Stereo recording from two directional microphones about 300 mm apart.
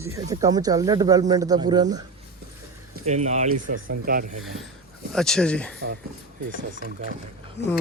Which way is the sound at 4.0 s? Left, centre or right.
Right.